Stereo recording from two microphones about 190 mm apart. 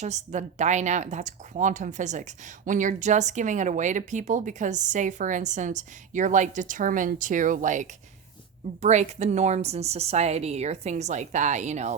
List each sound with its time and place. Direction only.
0.0 s speech: 40° right (ahead or behind)